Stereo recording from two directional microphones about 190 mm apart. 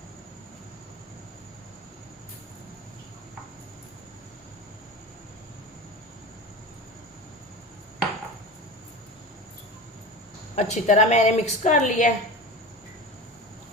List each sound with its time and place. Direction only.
10.5 s a woman's voice: 35° left (ahead or behind)